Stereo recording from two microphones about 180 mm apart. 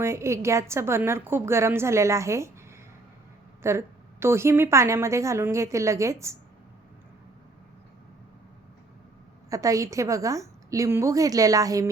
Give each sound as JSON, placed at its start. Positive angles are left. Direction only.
{"t": 0.0, "sound": "a woman's voice", "side_deg": -15}
{"t": 3.6, "sound": "a woman's voice", "side_deg": -15}
{"t": 9.5, "sound": "a woman's voice", "side_deg": -20}